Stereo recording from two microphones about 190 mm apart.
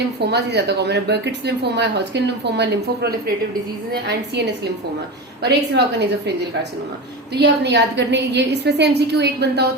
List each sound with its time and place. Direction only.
0.2 s speech: 60° right (ahead or behind)